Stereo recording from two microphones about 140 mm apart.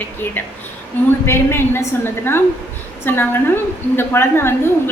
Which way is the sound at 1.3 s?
15° left (ahead or behind).